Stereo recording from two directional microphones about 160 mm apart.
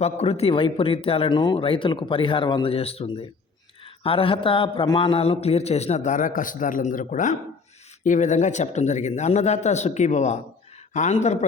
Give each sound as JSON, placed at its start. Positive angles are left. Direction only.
{"t": 0.0, "sound": "a man's voice", "side_deg": 40}